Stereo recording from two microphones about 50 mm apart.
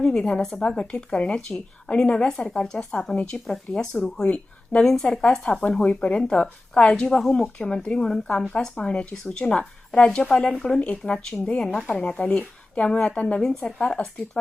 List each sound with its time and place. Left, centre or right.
0.0 s a woman's voice: centre
3.2 s speech: left
3.4 s a woman's voice: centre
3.9 s speech: left
4.8 s a woman's voice: centre
5.8 s a woman's voice: centre
8.8 s a woman's voice: centre
10.8 s a woman's voice: left